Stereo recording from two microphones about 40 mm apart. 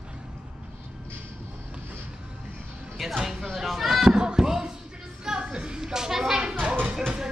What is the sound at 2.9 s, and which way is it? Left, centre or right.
Music, centre.